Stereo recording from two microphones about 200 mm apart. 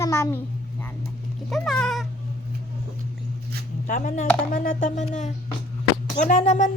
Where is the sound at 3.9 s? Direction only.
40° left (ahead or behind).